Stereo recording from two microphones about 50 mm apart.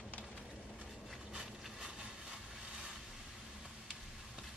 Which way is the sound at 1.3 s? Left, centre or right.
Centre.